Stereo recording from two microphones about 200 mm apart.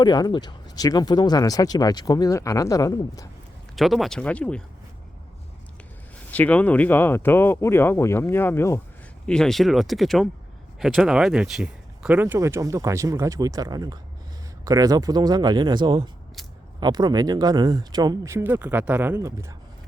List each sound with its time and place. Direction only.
0.0 s speech: 20° left (ahead or behind)
3.8 s speech: centre (ahead or behind)
6.3 s speech: 10° left (ahead or behind); by 19.5 s 15° right (ahead or behind)